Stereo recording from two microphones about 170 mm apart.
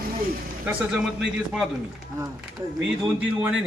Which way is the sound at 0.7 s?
5° right (ahead or behind).